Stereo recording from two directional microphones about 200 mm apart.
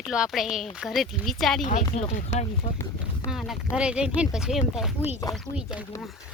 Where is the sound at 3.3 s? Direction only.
Centre (ahead or behind).